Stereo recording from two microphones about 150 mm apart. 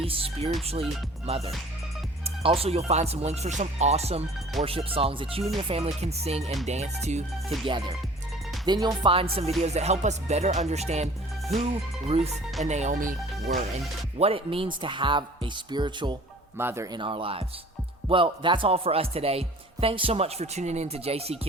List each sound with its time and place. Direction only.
0.0 s speech: 40° right (ahead or behind)
1.3 s music: 45° right (ahead or behind)
4.6 s speech: centre (ahead or behind)
4.9 s speech: 40° right (ahead or behind)
5.6 s music: 40° right (ahead or behind)
7.6 s speech: 40° right (ahead or behind)
9.6 s music: 45° right (ahead or behind)
12.6 s speech: 50° right (ahead or behind)
13.5 s music: 85° right
14.2 s speech: 40° right (ahead or behind)
16.6 s speech: 15° right (ahead or behind); by 21.3 s 45° right (ahead or behind)